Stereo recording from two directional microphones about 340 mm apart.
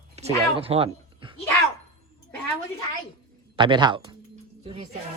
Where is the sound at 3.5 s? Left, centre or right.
Centre.